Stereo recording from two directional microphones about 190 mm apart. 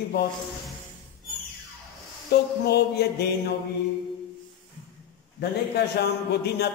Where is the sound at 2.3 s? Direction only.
60° left (ahead or behind).